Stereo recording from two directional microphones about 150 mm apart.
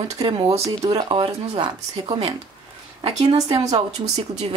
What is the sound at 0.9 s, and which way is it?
Speech, 30° right (ahead or behind).